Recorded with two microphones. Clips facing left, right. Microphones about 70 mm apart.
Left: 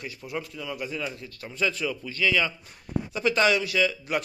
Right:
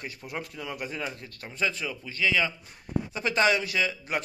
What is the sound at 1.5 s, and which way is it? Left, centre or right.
A man's voice, right.